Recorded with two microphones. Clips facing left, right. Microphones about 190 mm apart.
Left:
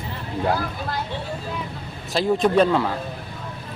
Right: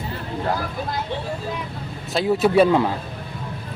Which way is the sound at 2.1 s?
5° right (ahead or behind).